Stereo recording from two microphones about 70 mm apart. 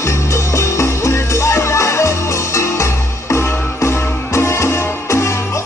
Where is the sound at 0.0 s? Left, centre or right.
Left.